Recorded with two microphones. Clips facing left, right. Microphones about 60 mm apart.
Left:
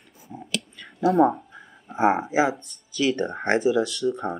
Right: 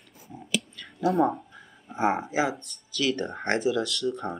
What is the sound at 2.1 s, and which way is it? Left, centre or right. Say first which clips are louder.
Speech: left 4 dB; centre.